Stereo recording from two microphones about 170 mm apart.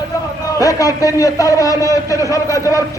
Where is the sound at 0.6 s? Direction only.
20° left (ahead or behind).